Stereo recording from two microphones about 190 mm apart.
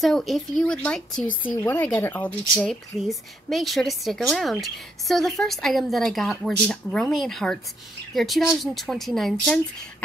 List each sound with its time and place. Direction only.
0.0 s speech: centre (ahead or behind)